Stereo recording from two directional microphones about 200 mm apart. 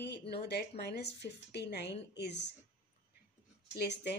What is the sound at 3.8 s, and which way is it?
Speech, 55° left (ahead or behind).